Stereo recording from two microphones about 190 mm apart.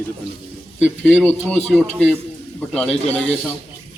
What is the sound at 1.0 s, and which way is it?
Speech, 10° left (ahead or behind).